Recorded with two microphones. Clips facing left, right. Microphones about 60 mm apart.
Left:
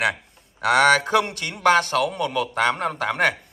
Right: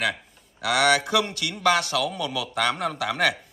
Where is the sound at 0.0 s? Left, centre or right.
Left.